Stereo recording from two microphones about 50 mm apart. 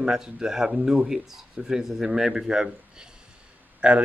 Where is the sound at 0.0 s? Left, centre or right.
Centre.